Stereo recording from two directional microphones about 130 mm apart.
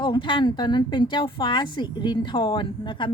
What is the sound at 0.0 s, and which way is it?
Speech, 35° left (ahead or behind).